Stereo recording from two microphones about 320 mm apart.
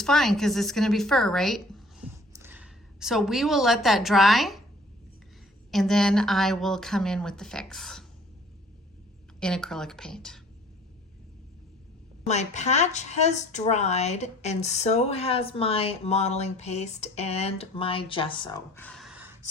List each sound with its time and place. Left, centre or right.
0.0 s speech: centre
2.0 s a sound: centre
2.4 s a woman's voice: centre
5.7 s speech: centre
9.4 s speech: centre
12.2 s speech: left; by 19.4 s centre